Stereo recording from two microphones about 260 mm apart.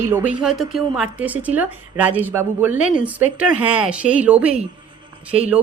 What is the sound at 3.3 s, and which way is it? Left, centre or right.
Speech, centre.